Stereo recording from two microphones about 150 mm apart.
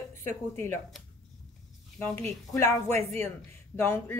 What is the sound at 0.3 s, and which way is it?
Speech, 15° left (ahead or behind).